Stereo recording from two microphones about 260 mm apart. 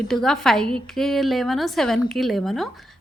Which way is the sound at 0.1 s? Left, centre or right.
Centre.